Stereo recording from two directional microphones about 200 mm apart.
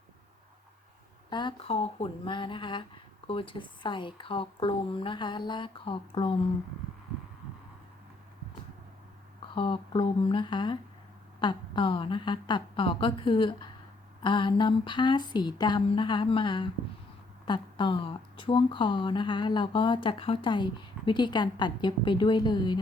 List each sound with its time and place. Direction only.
1.3 s speech: 20° left (ahead or behind)
9.6 s speech: 25° left (ahead or behind)